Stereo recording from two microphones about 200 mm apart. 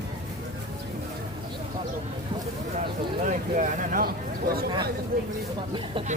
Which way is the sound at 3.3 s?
40° right (ahead or behind).